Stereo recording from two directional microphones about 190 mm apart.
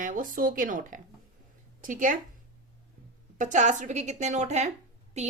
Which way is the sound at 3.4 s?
40° right (ahead or behind).